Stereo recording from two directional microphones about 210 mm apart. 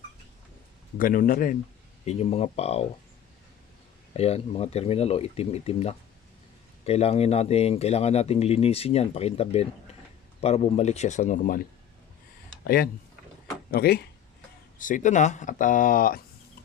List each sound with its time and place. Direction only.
0.9 s speech: 40° left (ahead or behind)
2.0 s speech: 30° left (ahead or behind)
4.1 s speech: 30° left (ahead or behind)
12.6 s speech: 45° left (ahead or behind)